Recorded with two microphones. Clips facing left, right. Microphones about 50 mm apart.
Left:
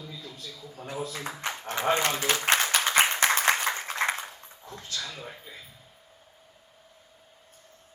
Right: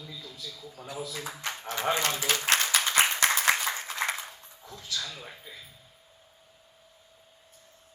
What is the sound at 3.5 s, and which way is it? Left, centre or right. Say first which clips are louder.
Applause: left 2 dB; left.